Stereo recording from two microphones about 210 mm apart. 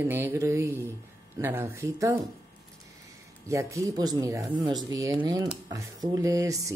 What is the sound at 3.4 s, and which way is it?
Speech, 15° right (ahead or behind).